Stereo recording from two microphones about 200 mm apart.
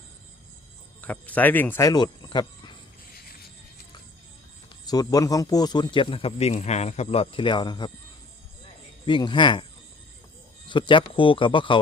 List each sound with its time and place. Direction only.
1.0 s speech: 10° left (ahead or behind)
4.9 s speech: 20° left (ahead or behind)
9.0 s speech: 25° left (ahead or behind)
10.7 s speech: 25° left (ahead or behind)